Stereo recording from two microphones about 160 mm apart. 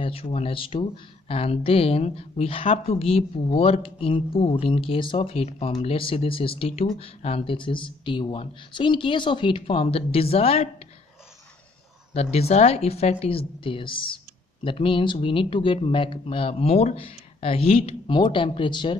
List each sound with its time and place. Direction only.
0.0 s speech: 35° left (ahead or behind)
12.1 s speech: 40° left (ahead or behind)